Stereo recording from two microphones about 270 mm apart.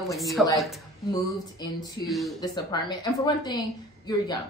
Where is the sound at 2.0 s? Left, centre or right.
Centre.